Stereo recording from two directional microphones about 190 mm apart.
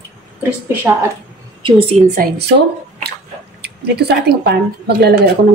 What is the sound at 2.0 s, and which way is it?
Speech, 45° right (ahead or behind).